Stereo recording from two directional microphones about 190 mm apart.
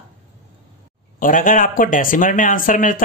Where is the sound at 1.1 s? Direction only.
45° left (ahead or behind).